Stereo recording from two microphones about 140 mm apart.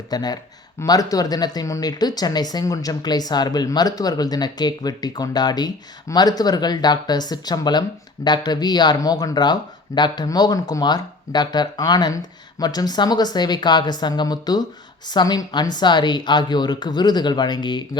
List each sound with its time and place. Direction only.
0.1 s speech: 30° left (ahead or behind)